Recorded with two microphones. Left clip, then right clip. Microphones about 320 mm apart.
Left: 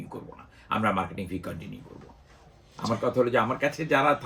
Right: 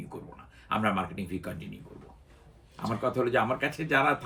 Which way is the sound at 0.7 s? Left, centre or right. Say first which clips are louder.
Left 2 dB; centre.